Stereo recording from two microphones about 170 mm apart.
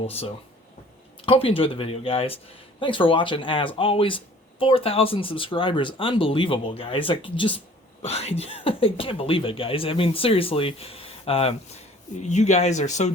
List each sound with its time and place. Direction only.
0.1 s speech: 35° left (ahead or behind)